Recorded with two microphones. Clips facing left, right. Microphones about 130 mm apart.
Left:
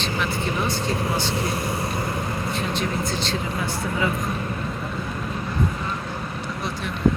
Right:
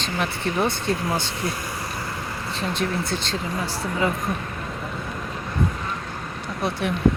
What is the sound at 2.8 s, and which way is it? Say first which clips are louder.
Speech: even; 55° right (ahead or behind).